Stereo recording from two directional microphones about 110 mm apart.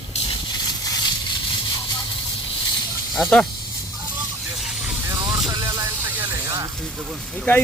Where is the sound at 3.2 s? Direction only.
5° left (ahead or behind).